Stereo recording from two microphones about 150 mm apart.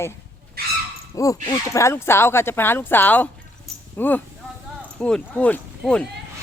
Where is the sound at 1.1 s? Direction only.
20° left (ahead or behind); by 6.1 s 5° left (ahead or behind).